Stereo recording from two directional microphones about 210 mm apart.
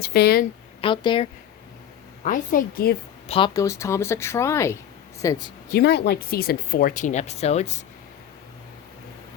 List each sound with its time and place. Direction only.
0.0 s speech: 50° left (ahead or behind)
0.8 s a woman's voice: 25° left (ahead or behind)
2.2 s speech: 40° left (ahead or behind)
3.2 s speech: 25° left (ahead or behind)
5.6 s speech: 50° left (ahead or behind); by 7.8 s 30° left (ahead or behind)